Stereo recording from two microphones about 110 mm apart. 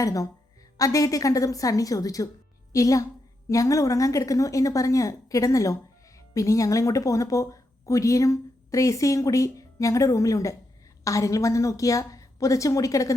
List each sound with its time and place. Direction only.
0.0 s a woman's voice: 30° left (ahead or behind)